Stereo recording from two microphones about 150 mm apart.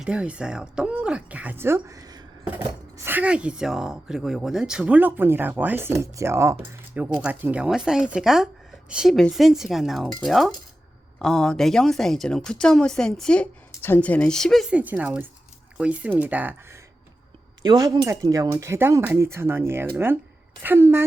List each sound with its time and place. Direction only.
0.0 s speech: 5° right (ahead or behind); by 2.2 s 25° right (ahead or behind)
2.5 s a woman's voice: 15° right (ahead or behind)
17.6 s speech: 25° right (ahead or behind)